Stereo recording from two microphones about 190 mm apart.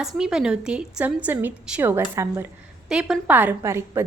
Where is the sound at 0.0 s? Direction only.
5° right (ahead or behind).